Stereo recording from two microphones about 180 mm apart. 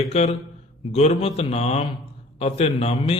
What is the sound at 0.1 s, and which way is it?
A man's voice, 35° left (ahead or behind).